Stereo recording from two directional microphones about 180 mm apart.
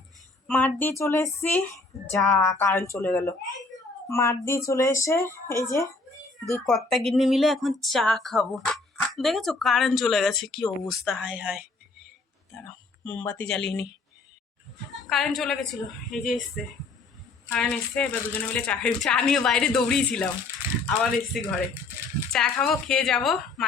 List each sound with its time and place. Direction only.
0.4 s speech: 10° left (ahead or behind)
6.7 s speech: centre (ahead or behind)
12.5 s speech: 10° left (ahead or behind)
15.1 s speech: centre (ahead or behind)
17.5 s speech: 5° left (ahead or behind)